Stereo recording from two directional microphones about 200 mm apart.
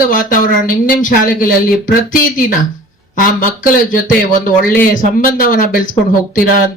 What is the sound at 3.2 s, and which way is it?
Speech, 45° left (ahead or behind).